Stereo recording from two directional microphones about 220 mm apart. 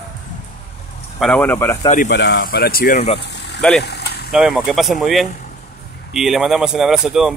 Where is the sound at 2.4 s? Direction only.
45° left (ahead or behind).